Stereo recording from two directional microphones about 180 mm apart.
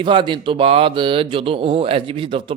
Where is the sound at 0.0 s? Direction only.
25° right (ahead or behind).